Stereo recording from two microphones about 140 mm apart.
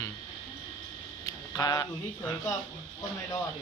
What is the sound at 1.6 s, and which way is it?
Speech, 30° left (ahead or behind).